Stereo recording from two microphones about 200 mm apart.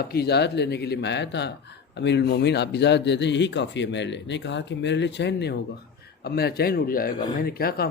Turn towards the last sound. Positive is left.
turn(degrees=50)  # may be behind; listen again after turning